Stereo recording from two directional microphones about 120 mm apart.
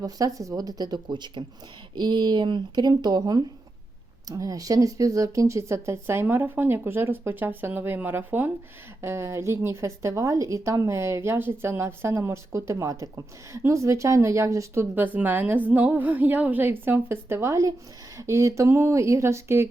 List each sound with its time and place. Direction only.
0.0 s a woman's voice: 30° right (ahead or behind)